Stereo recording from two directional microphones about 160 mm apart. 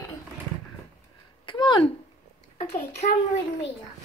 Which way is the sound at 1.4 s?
30° left (ahead or behind).